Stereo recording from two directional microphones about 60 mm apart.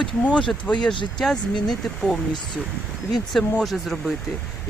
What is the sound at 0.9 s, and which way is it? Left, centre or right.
Speech, centre.